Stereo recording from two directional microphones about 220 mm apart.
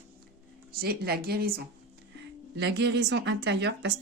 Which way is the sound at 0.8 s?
45° right (ahead or behind).